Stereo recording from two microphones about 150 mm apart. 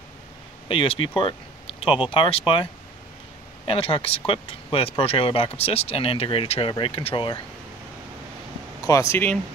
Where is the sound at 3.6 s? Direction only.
40° left (ahead or behind).